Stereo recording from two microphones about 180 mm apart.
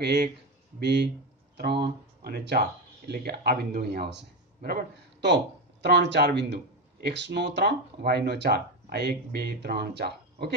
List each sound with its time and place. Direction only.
0.0 s speech: 70° right (ahead or behind)
2.2 s a man's voice: 60° right (ahead or behind)